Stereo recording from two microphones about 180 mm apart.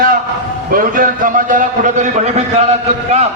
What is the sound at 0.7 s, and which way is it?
A man's voice, 50° right (ahead or behind).